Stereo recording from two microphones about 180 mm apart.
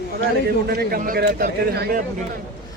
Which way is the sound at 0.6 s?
55° right (ahead or behind).